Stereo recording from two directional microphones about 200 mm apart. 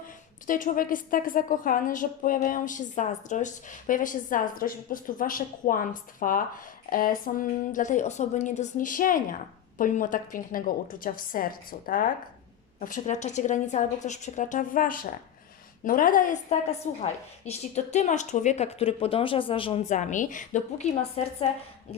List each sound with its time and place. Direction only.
0.4 s a woman's voice: 40° left (ahead or behind)